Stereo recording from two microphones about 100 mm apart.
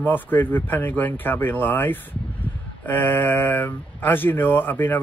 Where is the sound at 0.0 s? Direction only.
20° left (ahead or behind).